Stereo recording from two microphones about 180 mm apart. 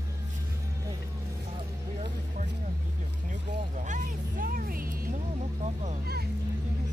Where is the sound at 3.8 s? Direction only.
45° right (ahead or behind).